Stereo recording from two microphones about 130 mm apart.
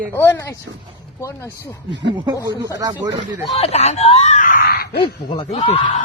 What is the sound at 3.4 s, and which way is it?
Speech, 50° left (ahead or behind).